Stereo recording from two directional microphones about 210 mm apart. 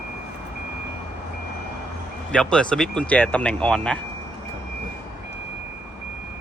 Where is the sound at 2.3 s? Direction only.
5° left (ahead or behind).